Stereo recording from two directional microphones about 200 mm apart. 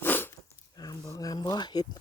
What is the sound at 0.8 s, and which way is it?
Speech, 15° left (ahead or behind).